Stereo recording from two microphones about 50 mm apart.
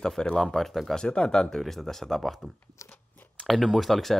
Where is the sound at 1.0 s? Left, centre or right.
Centre.